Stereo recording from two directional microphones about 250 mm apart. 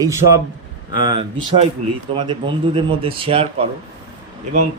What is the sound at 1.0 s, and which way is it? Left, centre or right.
A man's voice, centre.